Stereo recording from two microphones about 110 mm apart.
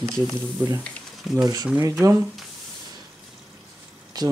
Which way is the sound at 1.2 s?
5° right (ahead or behind).